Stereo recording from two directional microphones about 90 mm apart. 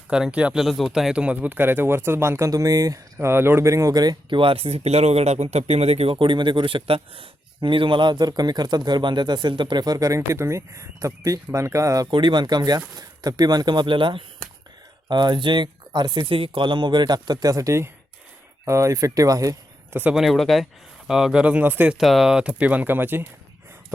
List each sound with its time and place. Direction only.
0.1 s speech: 10° right (ahead or behind)
0.6 s speech: centre (ahead or behind); by 3.0 s 40° right (ahead or behind)
3.2 s speech: 25° right (ahead or behind); by 4.4 s 50° right (ahead or behind)
4.4 s speech: 85° right
6.1 s speech: 65° right (ahead or behind); by 12.0 s 35° right (ahead or behind)
12.1 s speech: 60° right (ahead or behind)
15.1 s speech: 55° right (ahead or behind); by 19.5 s 40° right (ahead or behind)
20.1 s speech: centre (ahead or behind)
21.4 s speech: 20° right (ahead or behind)
21.9 s speech: centre (ahead or behind); by 23.2 s 20° right (ahead or behind)